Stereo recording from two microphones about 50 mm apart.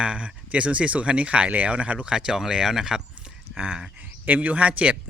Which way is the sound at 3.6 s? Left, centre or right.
Right.